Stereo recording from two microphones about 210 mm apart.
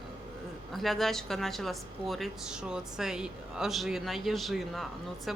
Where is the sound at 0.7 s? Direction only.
Centre (ahead or behind).